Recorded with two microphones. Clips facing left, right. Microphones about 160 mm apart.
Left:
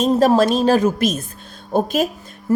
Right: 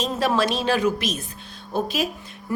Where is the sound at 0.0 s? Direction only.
40° left (ahead or behind).